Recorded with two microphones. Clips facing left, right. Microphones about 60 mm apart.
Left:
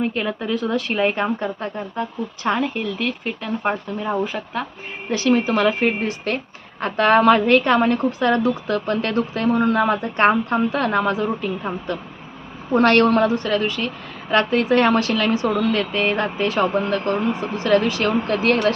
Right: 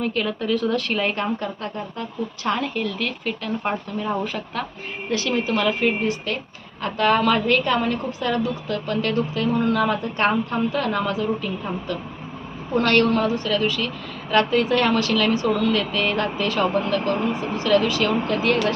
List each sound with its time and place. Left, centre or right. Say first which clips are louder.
0.0 s a woman's voice: left 1 dB; left
5.3 s a woman's voice: left 5 dB; left
9.5 s a woman's voice: left 4 dB; left